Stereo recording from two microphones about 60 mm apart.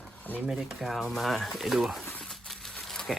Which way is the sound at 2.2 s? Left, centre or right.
Centre.